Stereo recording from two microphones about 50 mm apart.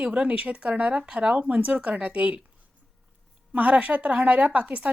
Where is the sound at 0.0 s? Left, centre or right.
Right.